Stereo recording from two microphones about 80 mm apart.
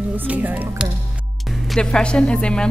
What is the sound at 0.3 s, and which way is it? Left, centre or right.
Speech, centre.